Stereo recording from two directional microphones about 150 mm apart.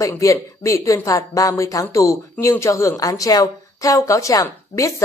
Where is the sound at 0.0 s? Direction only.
20° left (ahead or behind).